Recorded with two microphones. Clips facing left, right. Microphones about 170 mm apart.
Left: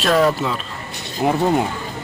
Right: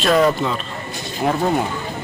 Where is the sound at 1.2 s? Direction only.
20° left (ahead or behind).